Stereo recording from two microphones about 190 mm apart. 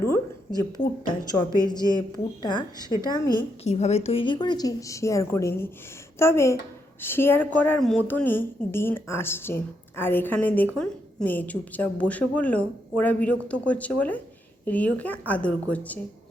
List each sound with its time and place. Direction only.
0.1 s a woman's voice: 20° left (ahead or behind)
3.6 s a woman's voice: 35° left (ahead or behind); by 16.0 s 5° left (ahead or behind)